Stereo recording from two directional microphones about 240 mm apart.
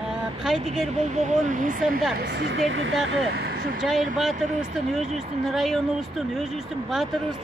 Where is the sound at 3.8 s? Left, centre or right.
Centre.